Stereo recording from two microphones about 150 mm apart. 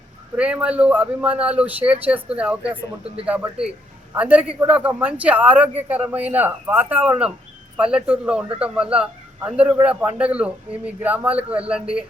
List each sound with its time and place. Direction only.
0.3 s a man's voice: 10° right (ahead or behind)